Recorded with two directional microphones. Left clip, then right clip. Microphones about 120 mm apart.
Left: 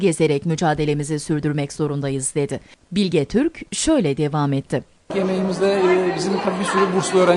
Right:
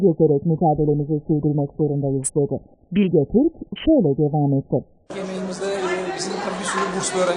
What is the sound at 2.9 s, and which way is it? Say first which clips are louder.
Speech: right 1 dB; centre (ahead or behind).